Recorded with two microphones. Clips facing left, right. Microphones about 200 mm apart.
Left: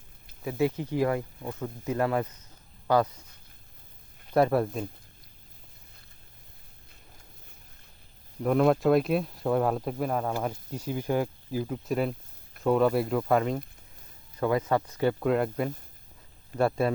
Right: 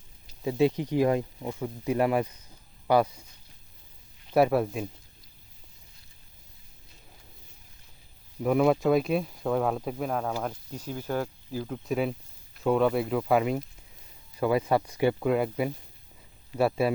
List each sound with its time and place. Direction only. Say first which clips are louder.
0.4 s speech: right 3 dB; 15° right (ahead or behind)
4.4 s speech: right 1 dB; 5° right (ahead or behind)
8.4 s speech: even; 5° right (ahead or behind)